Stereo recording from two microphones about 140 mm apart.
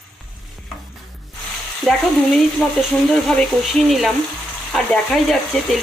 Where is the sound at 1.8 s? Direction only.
5° left (ahead or behind).